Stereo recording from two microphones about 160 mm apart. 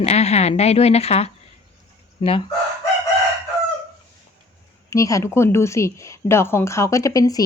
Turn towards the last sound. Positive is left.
turn(degrees=20)  # may be behind; listen again after turning